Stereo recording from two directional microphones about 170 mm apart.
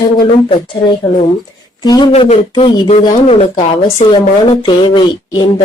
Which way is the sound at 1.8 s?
25° left (ahead or behind).